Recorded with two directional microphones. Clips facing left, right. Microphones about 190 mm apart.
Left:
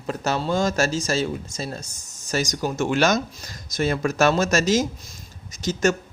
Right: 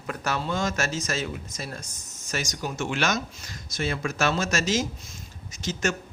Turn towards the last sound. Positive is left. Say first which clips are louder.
# left 7 dB
turn(degrees=40)  # may be behind; listen again after turning